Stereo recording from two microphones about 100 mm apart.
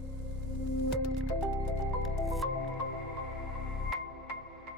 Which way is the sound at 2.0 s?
Centre (ahead or behind).